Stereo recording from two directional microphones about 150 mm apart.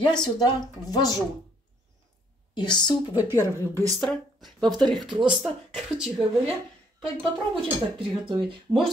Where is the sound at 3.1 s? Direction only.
15° right (ahead or behind).